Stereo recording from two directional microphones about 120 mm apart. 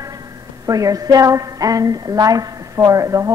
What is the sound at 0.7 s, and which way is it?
A woman's voice, 30° right (ahead or behind).